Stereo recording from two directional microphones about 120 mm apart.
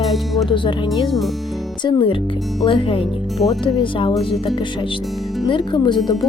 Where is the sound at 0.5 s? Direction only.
45° left (ahead or behind).